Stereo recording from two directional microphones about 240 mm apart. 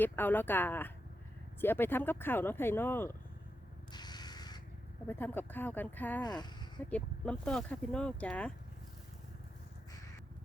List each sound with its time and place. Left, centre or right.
0.0 s speech: centre
3.9 s a sound: centre
5.0 s speech: centre
6.9 s speech: centre